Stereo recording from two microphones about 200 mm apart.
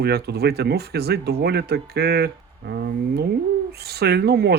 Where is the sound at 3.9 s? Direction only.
55° right (ahead or behind).